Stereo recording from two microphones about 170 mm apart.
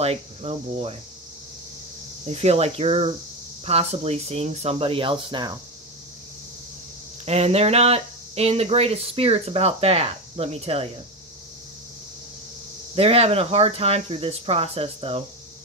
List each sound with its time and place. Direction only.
0.0 s speech: 35° right (ahead or behind)
2.2 s speech: 35° right (ahead or behind)
7.2 s speech: 35° right (ahead or behind)
12.9 s speech: 35° right (ahead or behind)